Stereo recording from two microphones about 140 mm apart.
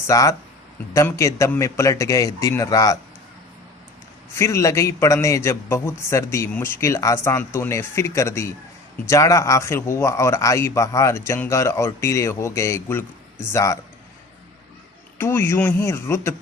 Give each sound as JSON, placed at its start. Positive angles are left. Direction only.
{"t": 0.1, "sound": "a man's voice", "side_deg": 20}
{"t": 4.4, "sound": "a man's voice", "side_deg": 20}
{"t": 15.2, "sound": "a man's voice", "side_deg": 15}